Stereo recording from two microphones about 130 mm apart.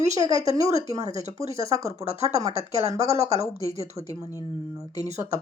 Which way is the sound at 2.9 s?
55° right (ahead or behind).